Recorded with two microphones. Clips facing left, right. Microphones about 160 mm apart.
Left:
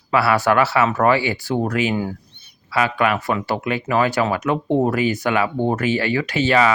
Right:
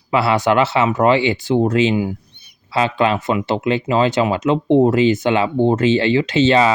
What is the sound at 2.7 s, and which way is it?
Speech, 25° right (ahead or behind).